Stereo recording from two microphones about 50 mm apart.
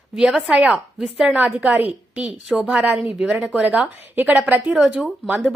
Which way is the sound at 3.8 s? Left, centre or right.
Right.